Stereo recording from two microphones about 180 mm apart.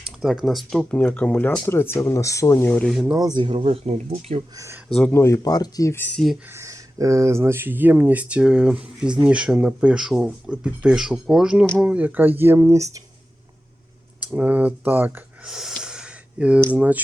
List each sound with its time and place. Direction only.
0.0 s speech: centre (ahead or behind)
3.2 s speech: 20° right (ahead or behind)
4.5 s speech: 15° right (ahead or behind)
4.9 s speech: 5° left (ahead or behind)
6.5 s speech: 15° right (ahead or behind); by 11.9 s 5° left (ahead or behind)
11.9 s speech: 10° right (ahead or behind)
14.2 s speech: 10° right (ahead or behind)